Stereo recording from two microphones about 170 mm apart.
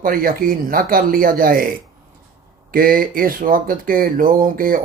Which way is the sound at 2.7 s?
55° right (ahead or behind).